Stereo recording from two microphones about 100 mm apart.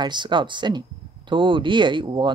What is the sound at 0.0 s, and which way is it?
Speech, 50° right (ahead or behind).